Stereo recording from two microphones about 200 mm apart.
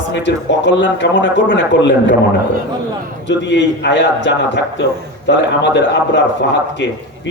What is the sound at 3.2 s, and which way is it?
Speech, 60° left (ahead or behind).